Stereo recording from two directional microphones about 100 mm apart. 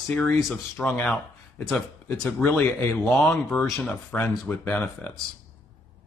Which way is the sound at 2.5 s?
20° left (ahead or behind).